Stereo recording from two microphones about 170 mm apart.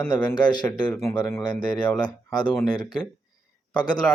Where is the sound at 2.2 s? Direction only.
25° left (ahead or behind).